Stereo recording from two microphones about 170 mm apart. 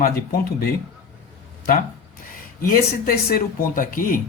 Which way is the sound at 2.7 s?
60° left (ahead or behind).